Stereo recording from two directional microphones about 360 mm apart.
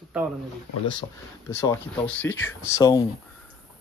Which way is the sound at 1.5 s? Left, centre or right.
Centre.